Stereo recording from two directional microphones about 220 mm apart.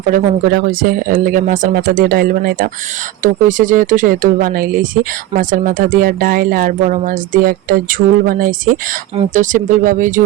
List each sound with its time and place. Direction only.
0.1 s speech: 40° right (ahead or behind)